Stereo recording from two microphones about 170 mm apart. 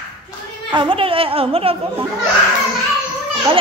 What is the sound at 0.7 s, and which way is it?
A woman's voice, 30° right (ahead or behind).